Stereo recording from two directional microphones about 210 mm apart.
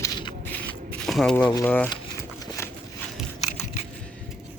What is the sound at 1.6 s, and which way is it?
Speech, 10° left (ahead or behind).